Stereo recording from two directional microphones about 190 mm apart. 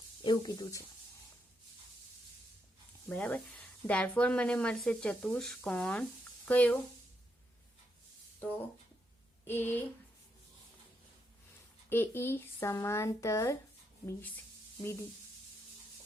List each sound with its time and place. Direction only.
0.2 s speech: 25° left (ahead or behind)
3.1 s speech: 10° left (ahead or behind)
8.4 s speech: 10° left (ahead or behind)
11.9 s speech: 10° left (ahead or behind)